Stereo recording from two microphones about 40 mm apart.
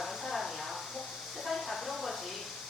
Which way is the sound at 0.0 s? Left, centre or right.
Centre.